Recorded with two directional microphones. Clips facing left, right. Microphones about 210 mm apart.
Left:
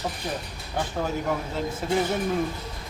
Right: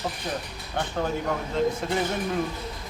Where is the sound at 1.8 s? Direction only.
5° left (ahead or behind).